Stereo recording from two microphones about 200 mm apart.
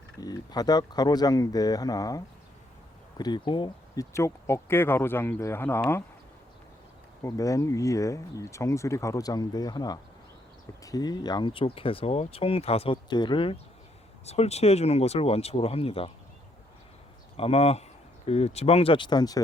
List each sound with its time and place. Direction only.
0.2 s speech: 20° left (ahead or behind)
7.2 s speech: 15° left (ahead or behind)
17.3 s speech: 30° left (ahead or behind)